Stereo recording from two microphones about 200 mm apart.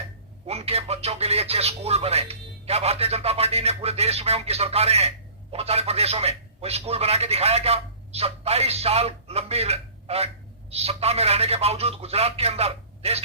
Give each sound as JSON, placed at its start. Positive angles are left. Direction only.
{"t": 0.4, "sound": "speech", "side_deg": -30}